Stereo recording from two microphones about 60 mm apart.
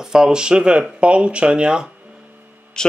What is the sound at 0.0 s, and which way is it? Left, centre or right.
Speech, centre.